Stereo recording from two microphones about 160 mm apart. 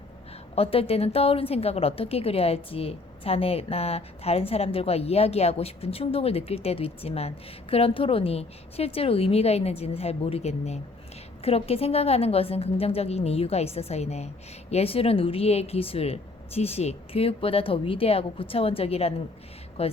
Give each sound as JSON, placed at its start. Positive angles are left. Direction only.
{"t": 0.5, "sound": "a woman's voice", "side_deg": 35}